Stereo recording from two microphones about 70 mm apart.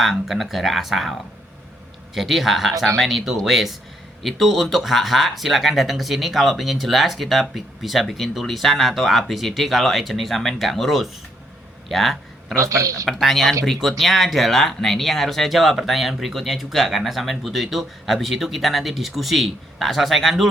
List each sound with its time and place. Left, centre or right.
0.0 s speech: centre
2.1 s speech: centre
11.9 s a sound: centre
12.6 s speech: right
13.1 s speech: centre